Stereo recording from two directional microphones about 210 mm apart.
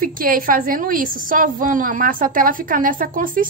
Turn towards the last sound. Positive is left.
turn(degrees=-40)  # may be behind; listen again after turning